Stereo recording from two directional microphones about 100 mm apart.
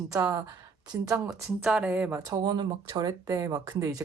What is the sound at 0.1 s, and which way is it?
A woman's voice, 35° right (ahead or behind).